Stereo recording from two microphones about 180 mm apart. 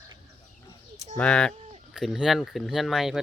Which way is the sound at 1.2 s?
5° left (ahead or behind).